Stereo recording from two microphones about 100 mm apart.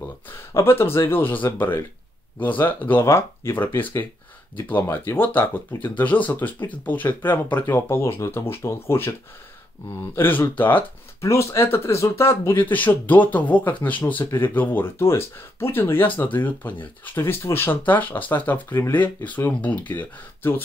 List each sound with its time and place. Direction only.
0.5 s speech: 25° left (ahead or behind)
10.1 s speech: 20° left (ahead or behind)